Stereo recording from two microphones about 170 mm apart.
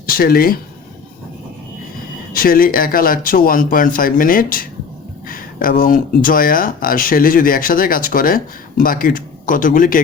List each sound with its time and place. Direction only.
0.0 s speech: 60° left (ahead or behind)
2.3 s a man's voice: 60° left (ahead or behind)